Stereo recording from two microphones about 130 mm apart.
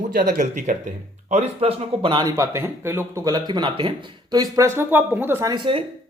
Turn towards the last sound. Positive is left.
turn(degrees=-35)  # may be behind; listen again after turning